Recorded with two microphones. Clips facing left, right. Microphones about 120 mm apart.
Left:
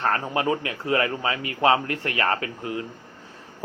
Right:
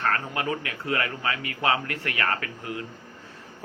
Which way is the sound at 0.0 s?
30° left (ahead or behind).